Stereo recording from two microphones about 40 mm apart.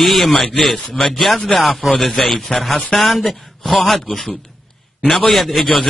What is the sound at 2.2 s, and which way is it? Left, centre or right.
Speech, centre.